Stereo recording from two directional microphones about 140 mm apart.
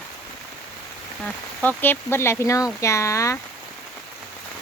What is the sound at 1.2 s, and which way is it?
Speech, 10° left (ahead or behind).